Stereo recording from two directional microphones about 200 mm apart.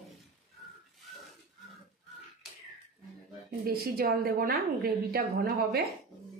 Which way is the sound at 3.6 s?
50° right (ahead or behind).